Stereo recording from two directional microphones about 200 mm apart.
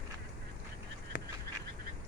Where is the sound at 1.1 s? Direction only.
45° left (ahead or behind).